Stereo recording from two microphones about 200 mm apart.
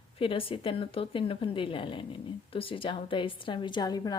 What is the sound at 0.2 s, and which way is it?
Speech, 25° left (ahead or behind).